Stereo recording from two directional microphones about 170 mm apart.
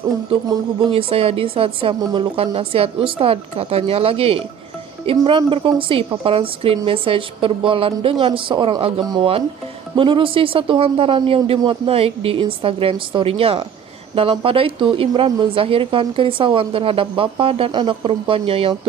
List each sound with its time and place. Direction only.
0.3 s speech: 30° right (ahead or behind)